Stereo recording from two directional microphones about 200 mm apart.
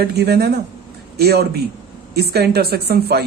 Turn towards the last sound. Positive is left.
turn(degrees=-55)  # may be behind; listen again after turning